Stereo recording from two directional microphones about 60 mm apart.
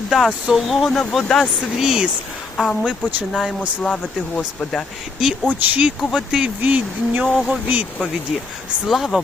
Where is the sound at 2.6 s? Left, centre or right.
Centre.